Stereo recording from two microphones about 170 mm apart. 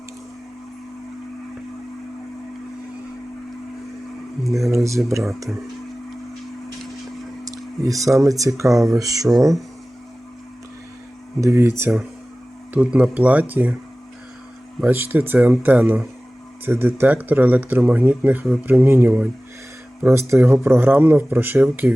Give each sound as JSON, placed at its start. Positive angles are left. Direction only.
{"t": 4.4, "sound": "speech", "side_deg": 0}
{"t": 4.7, "sound": "speech", "side_deg": -15}
{"t": 7.4, "sound": "speech", "side_deg": -20}
{"t": 11.3, "sound": "speech", "side_deg": -15}
{"t": 14.8, "sound": "speech", "side_deg": -10}